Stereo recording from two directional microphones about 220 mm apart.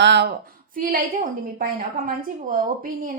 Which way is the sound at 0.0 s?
50° right (ahead or behind).